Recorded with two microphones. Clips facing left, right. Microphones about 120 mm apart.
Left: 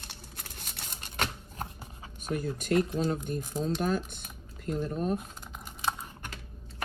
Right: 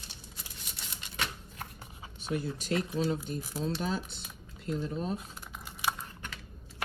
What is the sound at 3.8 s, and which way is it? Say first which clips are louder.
Speech: left 4 dB; 50° left (ahead or behind).